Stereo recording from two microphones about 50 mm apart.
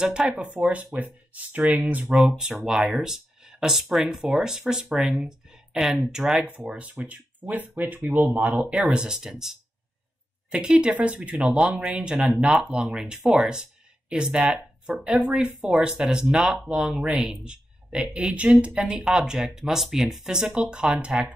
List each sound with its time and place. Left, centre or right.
0.0 s speech: centre
0.4 s speech: right
2.3 s speech: centre
6.7 s speech: right
8.7 s speech: centre
11.4 s speech: centre